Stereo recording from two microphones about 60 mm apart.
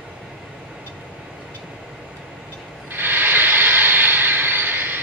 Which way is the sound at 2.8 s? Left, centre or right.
Right.